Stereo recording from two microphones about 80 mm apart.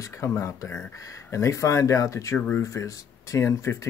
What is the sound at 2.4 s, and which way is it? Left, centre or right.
Speech, centre.